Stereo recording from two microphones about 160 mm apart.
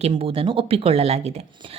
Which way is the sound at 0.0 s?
35° right (ahead or behind).